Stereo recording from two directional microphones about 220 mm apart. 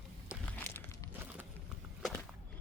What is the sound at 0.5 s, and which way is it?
Walk, 10° left (ahead or behind).